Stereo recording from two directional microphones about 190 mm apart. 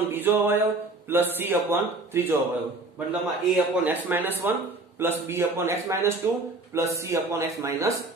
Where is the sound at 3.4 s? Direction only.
10° right (ahead or behind).